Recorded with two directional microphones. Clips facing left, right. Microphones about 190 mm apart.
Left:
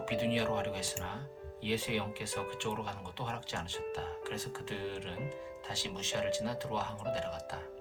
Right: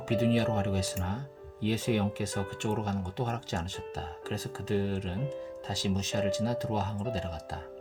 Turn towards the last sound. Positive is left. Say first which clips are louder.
# right 3 dB
turn(degrees=-40)  # may be behind; listen again after turning